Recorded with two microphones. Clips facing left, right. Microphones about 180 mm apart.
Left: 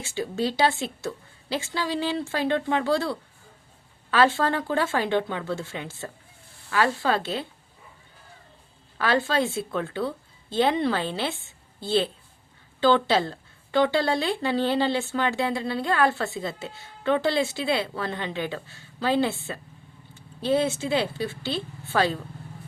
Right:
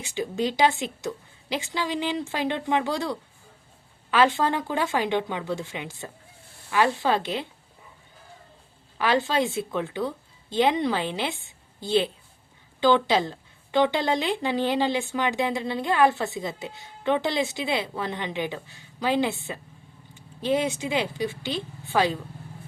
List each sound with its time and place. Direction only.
0.0 s a woman's voice: 15° right (ahead or behind)
9.0 s a woman's voice: 15° right (ahead or behind)